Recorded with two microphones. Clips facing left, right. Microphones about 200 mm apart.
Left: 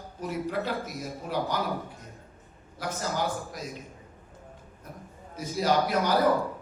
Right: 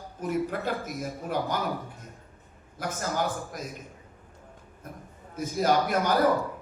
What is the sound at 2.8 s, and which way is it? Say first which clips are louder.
Speech: right 1 dB; 50° right (ahead or behind).